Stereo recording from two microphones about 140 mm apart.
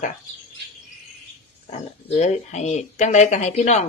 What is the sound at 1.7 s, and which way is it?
Speech, 55° left (ahead or behind).